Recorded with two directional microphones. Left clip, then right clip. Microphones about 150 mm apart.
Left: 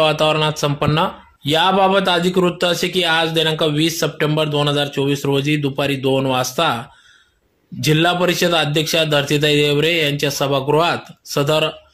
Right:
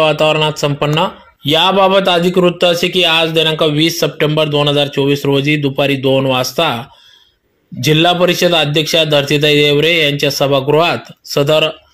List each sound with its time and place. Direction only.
0.0 s speech: centre (ahead or behind)